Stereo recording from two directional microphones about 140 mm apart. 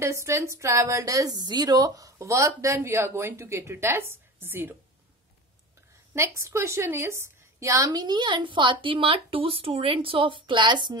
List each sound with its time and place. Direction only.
0.0 s a woman's voice: 20° right (ahead or behind)
6.1 s a woman's voice: 20° right (ahead or behind)